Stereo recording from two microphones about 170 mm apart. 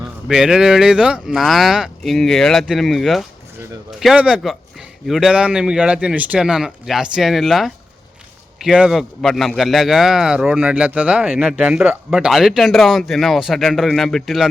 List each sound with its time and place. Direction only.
0.3 s a man's voice: 5° right (ahead or behind)